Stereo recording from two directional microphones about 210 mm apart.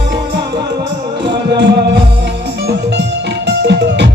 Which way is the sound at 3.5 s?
55° right (ahead or behind).